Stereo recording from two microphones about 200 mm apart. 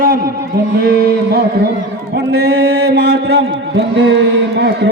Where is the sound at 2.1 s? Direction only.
55° right (ahead or behind).